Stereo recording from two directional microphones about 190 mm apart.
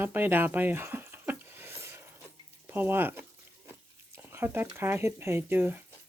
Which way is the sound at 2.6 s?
10° right (ahead or behind).